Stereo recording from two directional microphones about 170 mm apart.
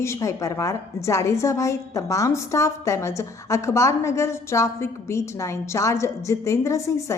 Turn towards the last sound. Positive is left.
turn(degrees=20)  # may be behind; listen again after turning